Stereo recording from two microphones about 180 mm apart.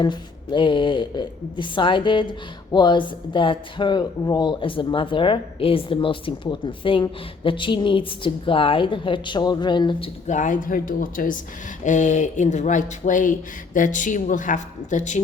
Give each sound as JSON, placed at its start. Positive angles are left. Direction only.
{"t": 0.0, "sound": "speech", "side_deg": 25}
{"t": 10.2, "sound": "speech", "side_deg": 45}